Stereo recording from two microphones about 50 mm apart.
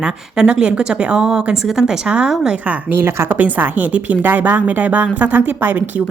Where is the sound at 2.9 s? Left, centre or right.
Right.